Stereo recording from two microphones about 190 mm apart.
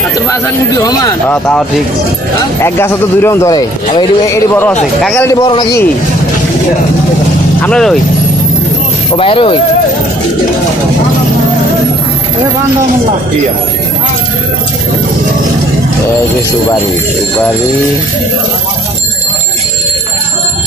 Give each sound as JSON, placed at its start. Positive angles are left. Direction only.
{"t": 0.3, "sound": "speech", "side_deg": 15}
{"t": 2.6, "sound": "speech", "side_deg": 15}
{"t": 7.6, "sound": "speech", "side_deg": 5}
{"t": 9.1, "sound": "speech", "side_deg": 30}